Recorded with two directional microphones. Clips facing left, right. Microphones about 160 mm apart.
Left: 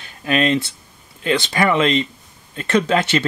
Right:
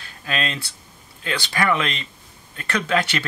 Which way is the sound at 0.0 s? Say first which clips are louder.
Left 8 dB; 20° left (ahead or behind).